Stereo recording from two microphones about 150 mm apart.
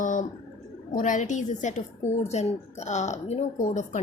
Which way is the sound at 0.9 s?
60° left (ahead or behind).